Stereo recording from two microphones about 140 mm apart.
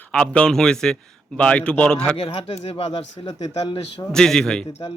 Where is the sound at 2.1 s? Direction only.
40° left (ahead or behind).